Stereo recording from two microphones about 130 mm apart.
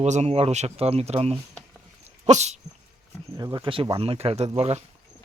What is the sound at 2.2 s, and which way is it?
Dog, 60° right (ahead or behind).